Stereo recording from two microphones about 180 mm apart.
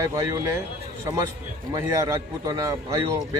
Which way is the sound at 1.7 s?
15° right (ahead or behind).